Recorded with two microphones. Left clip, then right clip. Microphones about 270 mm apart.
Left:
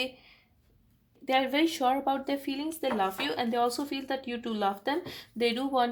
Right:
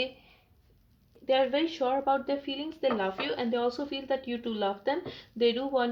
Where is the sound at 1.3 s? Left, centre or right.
Left.